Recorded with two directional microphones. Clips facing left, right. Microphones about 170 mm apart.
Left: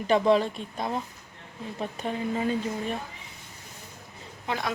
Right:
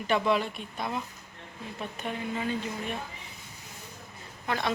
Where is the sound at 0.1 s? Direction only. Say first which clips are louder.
Left 5 dB; 30° left (ahead or behind).